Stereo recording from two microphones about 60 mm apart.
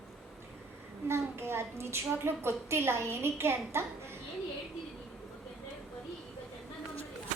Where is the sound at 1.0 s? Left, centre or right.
Right.